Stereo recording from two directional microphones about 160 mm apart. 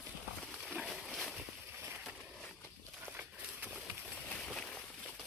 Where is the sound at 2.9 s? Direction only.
10° right (ahead or behind).